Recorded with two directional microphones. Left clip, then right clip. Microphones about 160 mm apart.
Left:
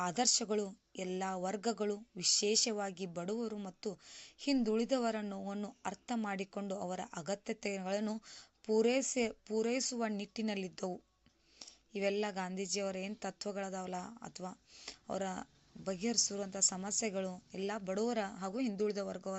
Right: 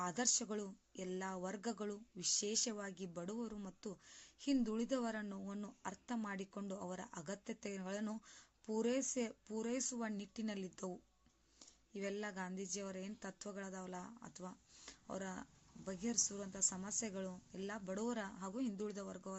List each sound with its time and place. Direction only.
0.0 s speech: 20° left (ahead or behind)